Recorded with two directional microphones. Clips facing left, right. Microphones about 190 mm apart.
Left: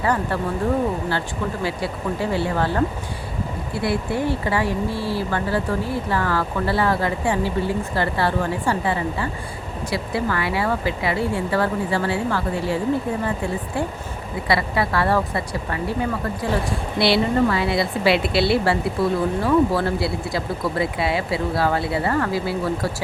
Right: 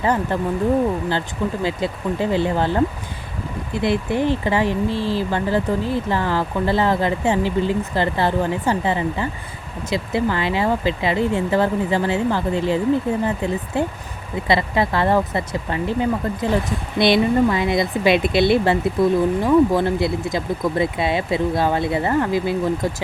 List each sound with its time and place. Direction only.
0.0 s speech: 20° right (ahead or behind)
1.6 s speech: 20° right (ahead or behind)